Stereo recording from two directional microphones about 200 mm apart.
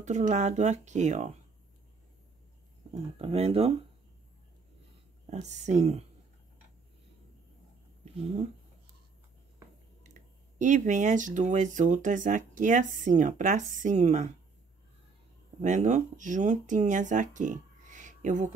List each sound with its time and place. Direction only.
0.0 s speech: 35° right (ahead or behind)
3.2 s speech: 30° right (ahead or behind)
5.2 s speech: 35° right (ahead or behind)
8.0 s speech: 30° right (ahead or behind)
10.6 s speech: 40° right (ahead or behind)
15.6 s speech: 35° right (ahead or behind)